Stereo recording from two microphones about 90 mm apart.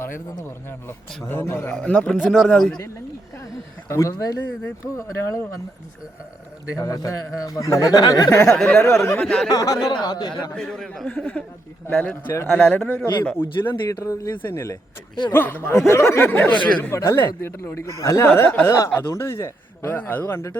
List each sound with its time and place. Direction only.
0.0 s a man's voice: 25° left (ahead or behind)
1.7 s a man's voice: 10° left (ahead or behind)
3.8 s a man's voice: 30° left (ahead or behind)
6.7 s a man's voice: 40° left (ahead or behind)
8.6 s a man's voice: 30° left (ahead or behind)
9.1 s a man's voice: 5° left (ahead or behind)
9.5 s a man's voice: 40° left (ahead or behind)
9.8 s speech: 55° left (ahead or behind)
10.6 s a man's voice: centre (ahead or behind)
11.1 s a man's voice: 15° left (ahead or behind)
12.0 s a man's voice: 25° left (ahead or behind)
13.8 s a man's voice: 35° left (ahead or behind)
15.3 s a man's voice: 20° left (ahead or behind)
20.0 s a man's voice: 20° left (ahead or behind)